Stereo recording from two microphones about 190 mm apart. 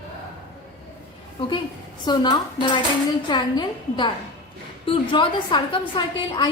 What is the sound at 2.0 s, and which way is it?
A woman's voice, 20° left (ahead or behind).